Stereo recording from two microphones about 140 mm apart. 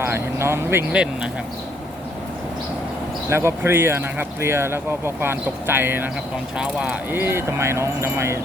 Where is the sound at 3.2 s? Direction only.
20° right (ahead or behind).